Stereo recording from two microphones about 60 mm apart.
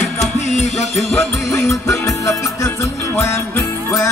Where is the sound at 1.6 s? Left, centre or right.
Left.